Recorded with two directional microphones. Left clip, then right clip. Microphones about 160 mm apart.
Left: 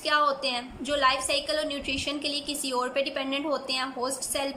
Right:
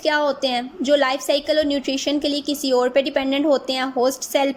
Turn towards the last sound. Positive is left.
turn(degrees=-45)  # may be behind; listen again after turning